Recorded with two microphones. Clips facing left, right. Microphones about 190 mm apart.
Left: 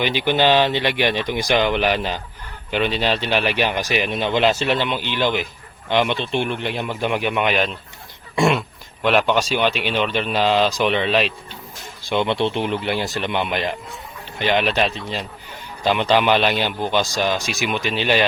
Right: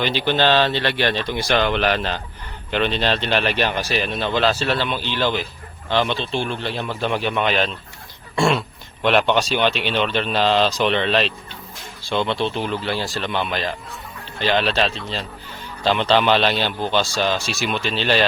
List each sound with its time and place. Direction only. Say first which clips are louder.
0.0 s speech: left 1 dB; 15° left (ahead or behind)